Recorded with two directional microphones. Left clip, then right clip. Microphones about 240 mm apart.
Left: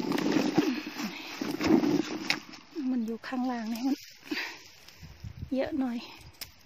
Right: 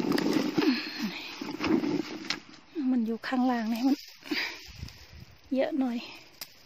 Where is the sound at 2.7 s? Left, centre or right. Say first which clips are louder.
Right 3 dB; centre.